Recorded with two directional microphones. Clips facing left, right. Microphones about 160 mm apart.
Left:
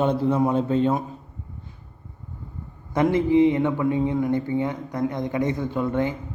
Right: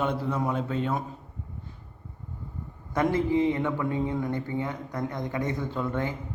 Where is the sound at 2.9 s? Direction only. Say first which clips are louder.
Left 5 dB; 20° left (ahead or behind).